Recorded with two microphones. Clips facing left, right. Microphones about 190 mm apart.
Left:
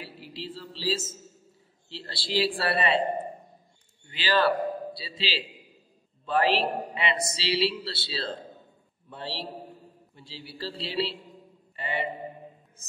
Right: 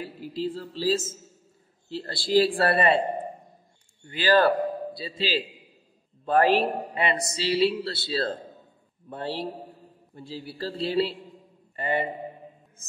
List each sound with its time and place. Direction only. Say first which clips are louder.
0.0 s a woman's voice: right 9 dB; 50° right (ahead or behind)
4.1 s a man's voice: right 4 dB; 45° right (ahead or behind)